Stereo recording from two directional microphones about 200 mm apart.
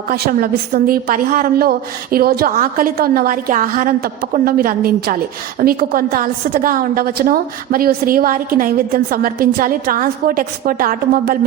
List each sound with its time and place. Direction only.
0.1 s a woman's voice: 50° right (ahead or behind)